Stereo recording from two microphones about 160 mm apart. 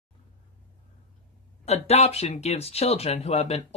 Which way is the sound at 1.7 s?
40° left (ahead or behind).